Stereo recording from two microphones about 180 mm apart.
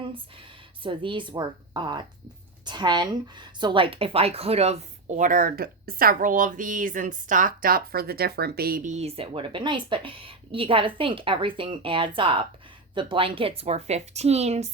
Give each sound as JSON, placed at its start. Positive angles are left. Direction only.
{"t": 0.8, "sound": "speech", "side_deg": -30}